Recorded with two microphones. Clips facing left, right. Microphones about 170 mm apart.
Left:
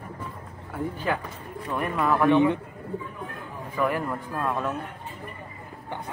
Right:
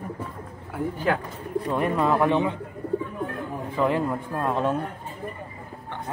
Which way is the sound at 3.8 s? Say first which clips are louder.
Right 3 dB; 25° right (ahead or behind).